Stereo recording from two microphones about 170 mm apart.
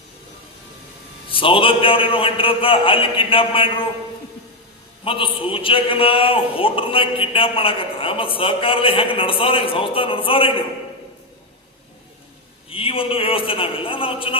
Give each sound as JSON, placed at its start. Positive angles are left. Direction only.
{"t": 1.3, "sound": "a man's voice", "side_deg": 30}
{"t": 5.0, "sound": "a man's voice", "side_deg": 30}
{"t": 12.7, "sound": "a man's voice", "side_deg": 35}